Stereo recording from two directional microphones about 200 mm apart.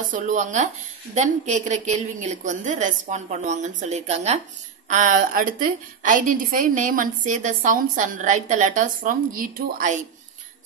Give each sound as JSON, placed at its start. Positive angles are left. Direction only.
{"t": 0.1, "sound": "a woman's voice", "side_deg": -40}